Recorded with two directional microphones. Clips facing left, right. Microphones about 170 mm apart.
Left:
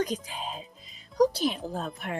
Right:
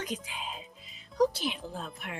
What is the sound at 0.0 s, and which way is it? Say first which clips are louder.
Speech: left 7 dB; 40° left (ahead or behind).